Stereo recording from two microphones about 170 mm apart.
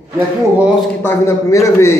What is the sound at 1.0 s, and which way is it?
Speech, 15° left (ahead or behind).